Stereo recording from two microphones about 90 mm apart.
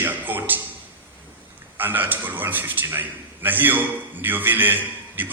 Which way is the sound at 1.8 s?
20° right (ahead or behind).